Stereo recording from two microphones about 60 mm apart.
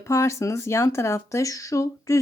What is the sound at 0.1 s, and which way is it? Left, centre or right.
Speech, left.